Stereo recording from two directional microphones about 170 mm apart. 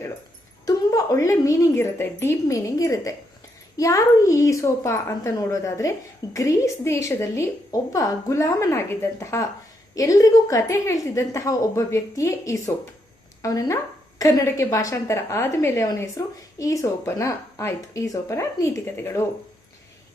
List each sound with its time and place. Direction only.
0.6 s a woman's voice: 20° left (ahead or behind)